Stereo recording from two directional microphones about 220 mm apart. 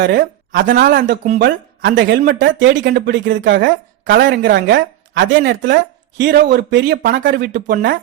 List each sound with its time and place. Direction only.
0.0 s a woman's voice: 45° right (ahead or behind)
0.9 s a woman's voice: 50° right (ahead or behind)